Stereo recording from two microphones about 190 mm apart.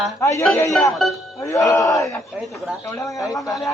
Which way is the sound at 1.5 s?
20° left (ahead or behind).